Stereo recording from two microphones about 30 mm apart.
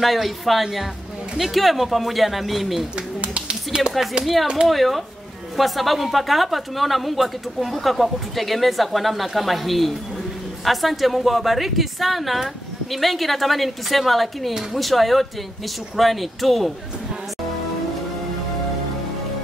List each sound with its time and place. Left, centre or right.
0.0 s speech: centre
3.2 s a sound: right
3.7 s speech: right
4.2 s speech: centre